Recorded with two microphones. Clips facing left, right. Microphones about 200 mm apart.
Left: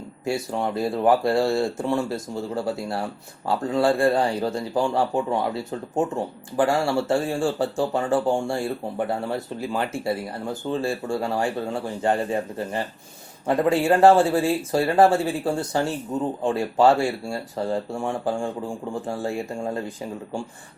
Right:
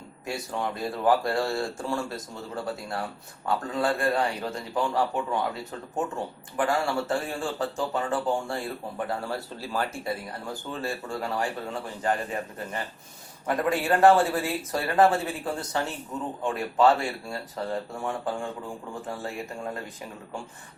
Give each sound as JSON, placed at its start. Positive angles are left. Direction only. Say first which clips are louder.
{"t": 0.3, "sound": "speech", "louder": "left 6 dB", "side_deg": 25}
{"t": 3.4, "sound": "speech", "louder": "left 6 dB", "side_deg": 30}